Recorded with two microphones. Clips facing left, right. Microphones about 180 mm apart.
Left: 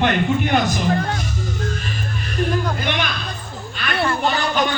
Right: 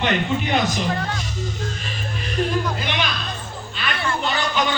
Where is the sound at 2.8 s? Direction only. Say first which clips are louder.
Left 2 dB; 50° left (ahead or behind).